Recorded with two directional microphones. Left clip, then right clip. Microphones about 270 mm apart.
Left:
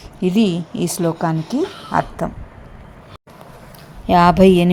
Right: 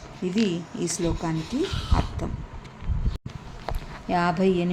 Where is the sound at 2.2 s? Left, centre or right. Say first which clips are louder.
Left 11 dB; left.